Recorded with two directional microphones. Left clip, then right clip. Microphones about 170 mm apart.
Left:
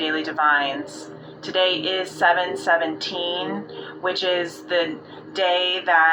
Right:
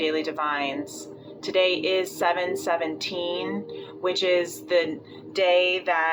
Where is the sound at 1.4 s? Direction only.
20° right (ahead or behind).